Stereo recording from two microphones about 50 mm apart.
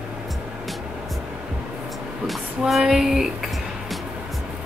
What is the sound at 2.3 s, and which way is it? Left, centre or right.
Music, centre.